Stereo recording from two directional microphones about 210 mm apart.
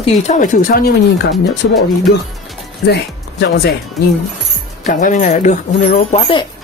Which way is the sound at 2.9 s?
55° left (ahead or behind).